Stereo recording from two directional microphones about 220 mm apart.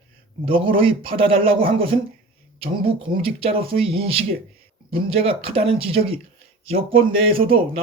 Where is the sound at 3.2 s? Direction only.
25° right (ahead or behind).